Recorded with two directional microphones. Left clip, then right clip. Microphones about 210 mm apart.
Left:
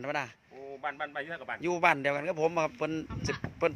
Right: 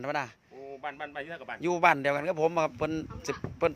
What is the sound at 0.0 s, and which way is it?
A man's voice, 10° right (ahead or behind).